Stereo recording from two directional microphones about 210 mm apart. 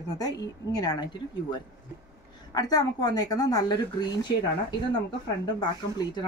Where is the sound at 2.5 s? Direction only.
20° left (ahead or behind).